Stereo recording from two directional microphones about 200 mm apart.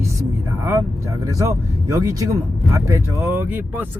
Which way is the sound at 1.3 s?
15° right (ahead or behind).